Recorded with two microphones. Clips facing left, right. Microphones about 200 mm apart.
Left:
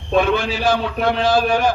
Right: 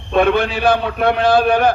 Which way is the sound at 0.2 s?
60° right (ahead or behind).